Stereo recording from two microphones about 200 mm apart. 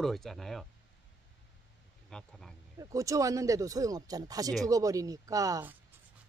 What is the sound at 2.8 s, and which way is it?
Speech, 15° right (ahead or behind).